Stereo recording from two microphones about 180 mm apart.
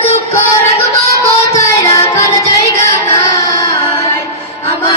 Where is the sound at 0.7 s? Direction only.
15° left (ahead or behind).